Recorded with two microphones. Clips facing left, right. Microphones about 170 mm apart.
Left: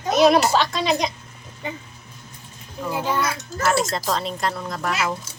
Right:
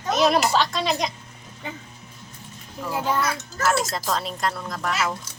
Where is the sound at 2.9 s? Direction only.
Centre (ahead or behind).